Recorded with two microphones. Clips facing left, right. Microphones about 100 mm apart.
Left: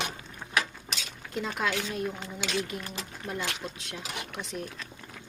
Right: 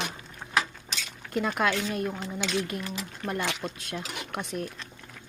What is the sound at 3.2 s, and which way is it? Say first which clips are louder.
Speech: right 4 dB; 60° right (ahead or behind).